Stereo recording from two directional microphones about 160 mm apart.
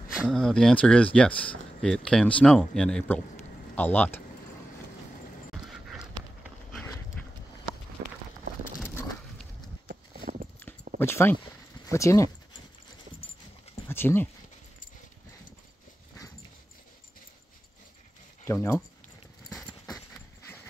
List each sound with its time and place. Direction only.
0.1 s speech: centre (ahead or behind)
5.7 s dog: 5° right (ahead or behind)
9.8 s clip-clop: 60° right (ahead or behind)
11.0 s speech: 15° left (ahead or behind)
13.8 s speech: 15° left (ahead or behind)
18.4 s speech: 15° left (ahead or behind)
19.5 s horse: centre (ahead or behind)